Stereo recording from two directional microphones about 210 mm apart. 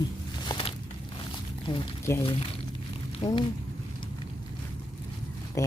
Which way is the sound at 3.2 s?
15° left (ahead or behind).